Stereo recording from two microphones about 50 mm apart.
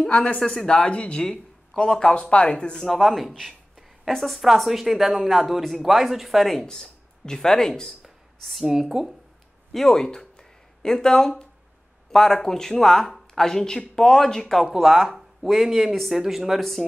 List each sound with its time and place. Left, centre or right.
0.4 s speech: centre
2.8 s speech: centre
6.6 s speech: centre
8.0 s speech: centre
9.7 s speech: centre
14.7 s speech: centre